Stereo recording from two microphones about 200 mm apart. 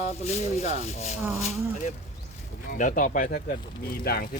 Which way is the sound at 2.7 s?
45° left (ahead or behind).